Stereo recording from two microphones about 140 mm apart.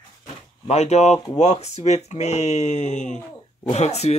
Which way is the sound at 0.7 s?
50° left (ahead or behind).